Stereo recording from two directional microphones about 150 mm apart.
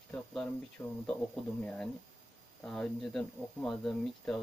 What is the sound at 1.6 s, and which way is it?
Speech, 5° left (ahead or behind).